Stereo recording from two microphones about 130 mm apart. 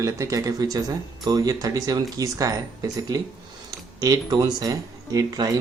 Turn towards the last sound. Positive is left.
turn(degrees=-30)  # may be behind; listen again after turning